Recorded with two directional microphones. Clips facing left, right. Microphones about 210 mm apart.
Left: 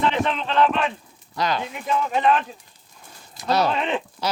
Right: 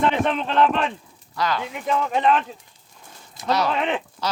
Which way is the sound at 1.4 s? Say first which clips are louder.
Even; 20° left (ahead or behind).